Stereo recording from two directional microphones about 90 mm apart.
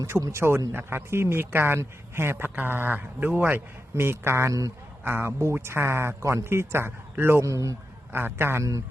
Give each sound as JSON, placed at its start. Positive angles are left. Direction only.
{"t": 0.0, "sound": "a man's voice", "side_deg": -35}
{"t": 8.1, "sound": "a man's voice", "side_deg": -25}